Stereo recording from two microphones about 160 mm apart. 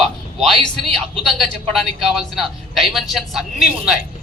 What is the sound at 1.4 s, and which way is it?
A man's voice, centre (ahead or behind).